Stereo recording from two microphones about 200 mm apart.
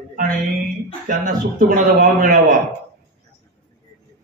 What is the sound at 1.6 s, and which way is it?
Speech, 45° right (ahead or behind).